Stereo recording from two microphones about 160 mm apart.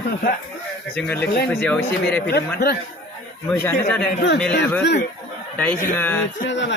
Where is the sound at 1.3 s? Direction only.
85° left.